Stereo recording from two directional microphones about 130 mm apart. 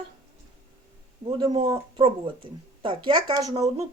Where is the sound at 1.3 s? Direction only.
40° right (ahead or behind).